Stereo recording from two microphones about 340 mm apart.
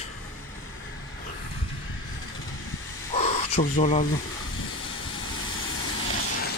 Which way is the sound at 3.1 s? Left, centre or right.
Centre.